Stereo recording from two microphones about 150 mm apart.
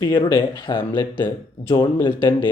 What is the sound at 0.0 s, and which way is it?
Speech, 30° left (ahead or behind).